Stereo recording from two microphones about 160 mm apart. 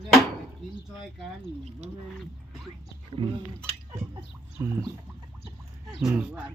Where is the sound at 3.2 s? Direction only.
30° right (ahead or behind).